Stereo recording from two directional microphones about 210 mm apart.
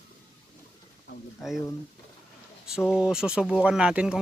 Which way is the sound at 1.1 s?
55° left (ahead or behind).